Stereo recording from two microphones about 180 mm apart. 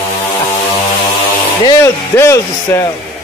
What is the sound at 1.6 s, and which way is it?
Speech, 15° left (ahead or behind).